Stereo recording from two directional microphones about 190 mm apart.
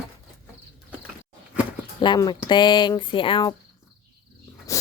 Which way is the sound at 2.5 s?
25° left (ahead or behind).